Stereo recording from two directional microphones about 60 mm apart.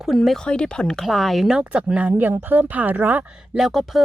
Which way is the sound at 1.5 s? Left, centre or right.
Centre.